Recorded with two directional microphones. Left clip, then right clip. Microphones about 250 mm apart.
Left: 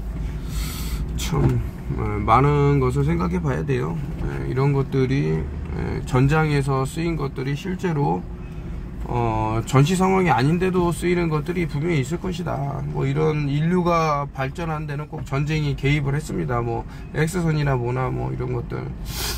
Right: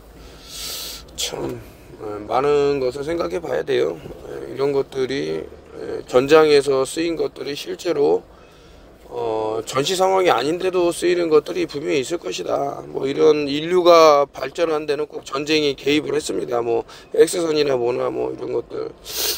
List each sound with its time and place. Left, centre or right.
0.6 s a sound: right
2.4 s speech: right
9.2 s speech: centre